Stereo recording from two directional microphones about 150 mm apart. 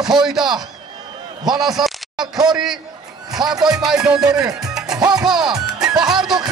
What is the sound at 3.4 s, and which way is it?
Speech, 30° right (ahead or behind).